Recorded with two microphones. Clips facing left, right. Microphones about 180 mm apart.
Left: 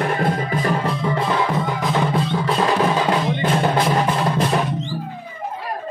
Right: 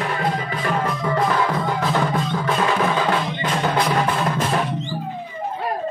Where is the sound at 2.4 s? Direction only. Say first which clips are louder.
Left 2 dB; 35° left (ahead or behind).